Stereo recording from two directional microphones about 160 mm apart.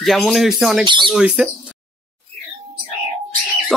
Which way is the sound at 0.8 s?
30° right (ahead or behind).